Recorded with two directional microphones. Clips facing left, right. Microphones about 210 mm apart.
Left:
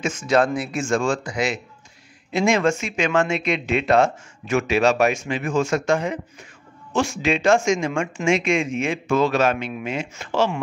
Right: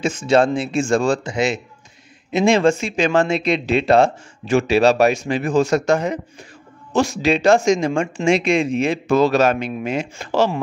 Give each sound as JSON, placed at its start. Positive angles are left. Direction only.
{"t": 0.0, "sound": "speech", "side_deg": -30}